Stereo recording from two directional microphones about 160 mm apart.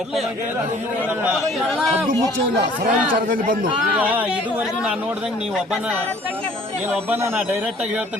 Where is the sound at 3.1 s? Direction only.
60° right (ahead or behind).